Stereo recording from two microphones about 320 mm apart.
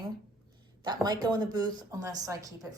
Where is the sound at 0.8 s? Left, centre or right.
Centre.